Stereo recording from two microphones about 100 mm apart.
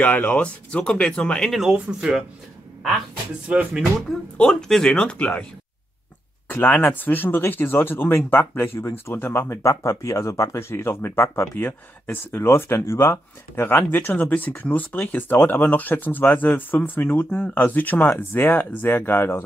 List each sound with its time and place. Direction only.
0.0 s speech: 15° left (ahead or behind)
1.6 s speech: 5° right (ahead or behind)
3.4 s speech: 15° right (ahead or behind)
4.4 s speech: 5° left (ahead or behind)
6.5 s speech: 20° left (ahead or behind)